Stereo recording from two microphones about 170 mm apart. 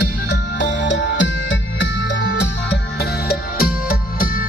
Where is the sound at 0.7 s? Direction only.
90° left.